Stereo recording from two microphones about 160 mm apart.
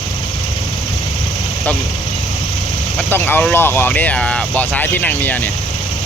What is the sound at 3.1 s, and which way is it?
Speech, 15° left (ahead or behind).